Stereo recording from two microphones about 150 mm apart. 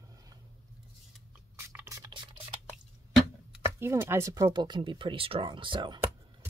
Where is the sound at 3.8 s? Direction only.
15° right (ahead or behind); by 6.0 s 30° right (ahead or behind).